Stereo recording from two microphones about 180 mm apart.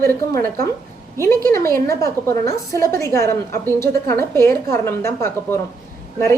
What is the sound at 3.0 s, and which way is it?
A woman's voice, 15° left (ahead or behind).